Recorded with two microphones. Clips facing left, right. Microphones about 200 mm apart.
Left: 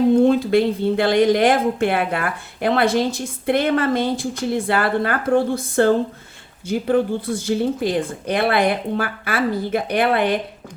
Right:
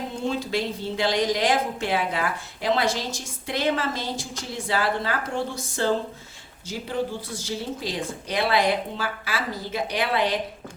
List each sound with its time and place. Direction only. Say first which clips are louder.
0.2 s speech: left 12 dB; 60° left (ahead or behind)